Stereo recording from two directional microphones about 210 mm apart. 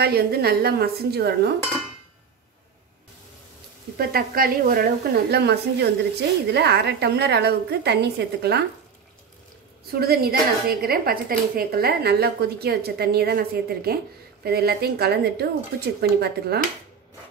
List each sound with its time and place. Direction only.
0.0 s a woman's voice: 50° right (ahead or behind)
4.1 s a woman's voice: 45° right (ahead or behind)
9.8 s a woman's voice: 45° right (ahead or behind)